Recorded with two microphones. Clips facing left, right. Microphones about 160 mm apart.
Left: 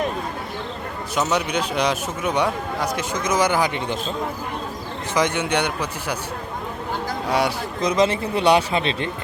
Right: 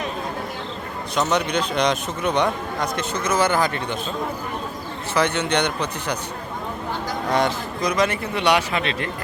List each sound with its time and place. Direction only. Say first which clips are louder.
1.1 s a man's voice: right 1 dB; 5° left (ahead or behind)
5.1 s a man's voice: even; 10° left (ahead or behind)
7.3 s speech: right 1 dB; 10° left (ahead or behind)
7.8 s a man's voice: left 3 dB; 25° left (ahead or behind)